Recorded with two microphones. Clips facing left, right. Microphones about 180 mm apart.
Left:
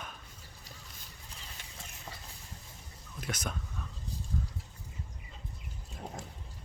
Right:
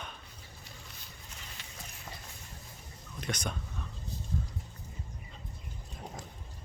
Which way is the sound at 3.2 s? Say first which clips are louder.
Right 1 dB; 5° left (ahead or behind).